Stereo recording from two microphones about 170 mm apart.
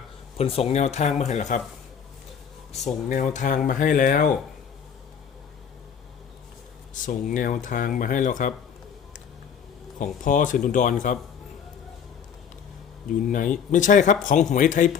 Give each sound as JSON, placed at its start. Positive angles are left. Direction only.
{"t": 0.3, "sound": "speech", "side_deg": 35}
{"t": 2.8, "sound": "speech", "side_deg": 45}
{"t": 6.9, "sound": "speech", "side_deg": 50}
{"t": 10.0, "sound": "speech", "side_deg": 50}
{"t": 13.1, "sound": "speech", "side_deg": 50}